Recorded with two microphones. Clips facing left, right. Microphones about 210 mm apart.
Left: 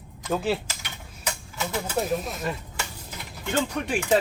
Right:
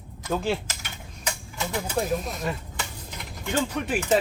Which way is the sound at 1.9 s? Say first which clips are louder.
Even; centre (ahead or behind).